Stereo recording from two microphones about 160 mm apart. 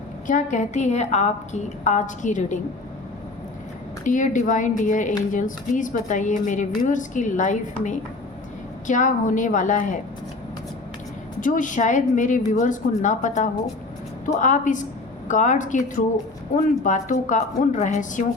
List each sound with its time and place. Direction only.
0.3 s a woman's voice: 50° left (ahead or behind)
4.0 s a woman's voice: 55° left (ahead or behind)
11.3 s a woman's voice: 55° left (ahead or behind)